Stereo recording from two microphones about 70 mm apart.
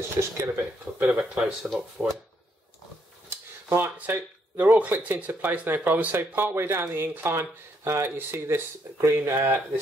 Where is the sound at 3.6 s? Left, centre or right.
Right.